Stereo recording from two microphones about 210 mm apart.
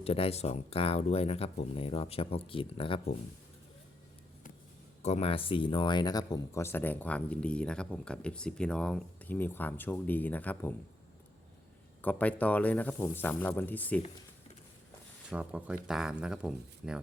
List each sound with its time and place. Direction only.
0.0 s speech: 30° left (ahead or behind)
5.0 s speech: 30° left (ahead or behind); by 10.8 s 10° left (ahead or behind)
12.0 s speech: 5° left (ahead or behind)
15.3 s speech: 5° right (ahead or behind)